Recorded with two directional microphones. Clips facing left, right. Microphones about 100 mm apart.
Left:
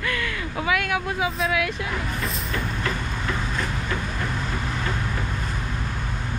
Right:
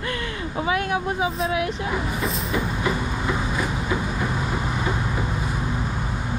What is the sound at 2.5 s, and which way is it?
Vehicle, 15° right (ahead or behind).